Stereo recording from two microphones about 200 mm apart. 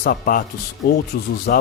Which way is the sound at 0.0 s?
45° left (ahead or behind).